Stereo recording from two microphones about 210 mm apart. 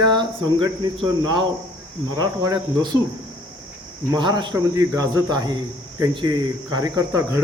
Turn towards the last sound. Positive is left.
turn(degrees=-15)  # may be behind; listen again after turning